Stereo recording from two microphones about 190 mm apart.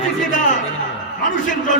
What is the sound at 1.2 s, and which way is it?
Speech, 45° left (ahead or behind).